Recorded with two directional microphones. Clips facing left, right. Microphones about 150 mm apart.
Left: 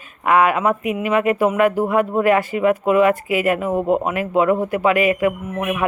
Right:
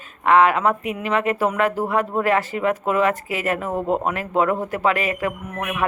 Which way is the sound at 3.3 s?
40° right (ahead or behind).